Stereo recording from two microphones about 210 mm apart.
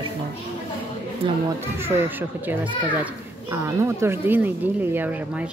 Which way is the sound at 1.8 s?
10° right (ahead or behind).